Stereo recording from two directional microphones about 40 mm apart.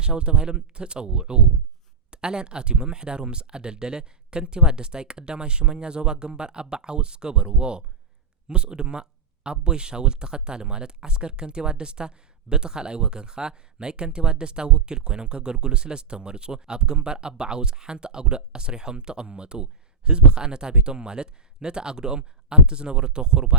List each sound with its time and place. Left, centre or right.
0.0 s speech: right